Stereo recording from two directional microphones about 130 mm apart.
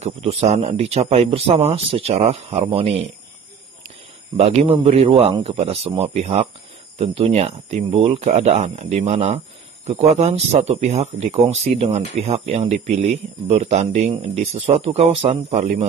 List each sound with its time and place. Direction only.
0.0 s speech: 55° right (ahead or behind)
4.4 s speech: 55° right (ahead or behind)
8.2 s speech: 60° right (ahead or behind)